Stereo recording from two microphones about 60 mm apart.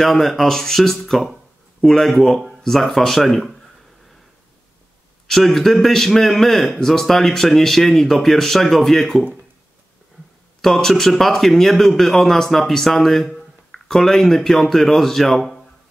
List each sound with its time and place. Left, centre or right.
0.0 s a man's voice: centre
5.3 s a man's voice: centre
10.6 s a man's voice: centre